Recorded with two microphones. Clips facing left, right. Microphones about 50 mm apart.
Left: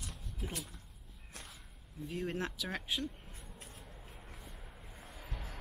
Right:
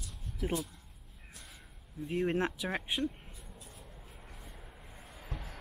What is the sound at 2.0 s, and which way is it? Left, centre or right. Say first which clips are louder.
Speech: right 7 dB; right.